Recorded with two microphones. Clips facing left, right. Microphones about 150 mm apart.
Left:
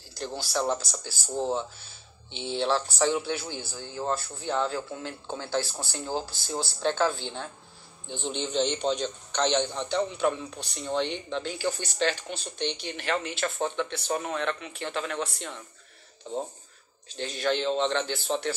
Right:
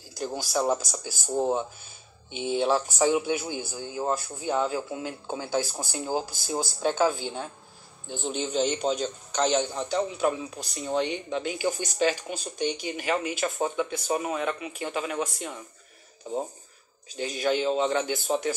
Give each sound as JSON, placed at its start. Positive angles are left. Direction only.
{"t": 0.1, "sound": "a man's voice", "side_deg": -15}